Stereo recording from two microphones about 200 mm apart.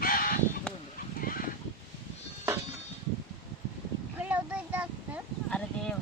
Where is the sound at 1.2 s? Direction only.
45° left (ahead or behind).